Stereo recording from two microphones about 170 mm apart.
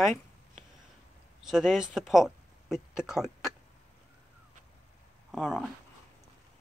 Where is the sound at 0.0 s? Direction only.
Centre (ahead or behind).